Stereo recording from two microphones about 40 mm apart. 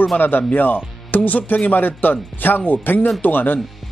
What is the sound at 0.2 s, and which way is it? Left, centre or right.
Speech, left.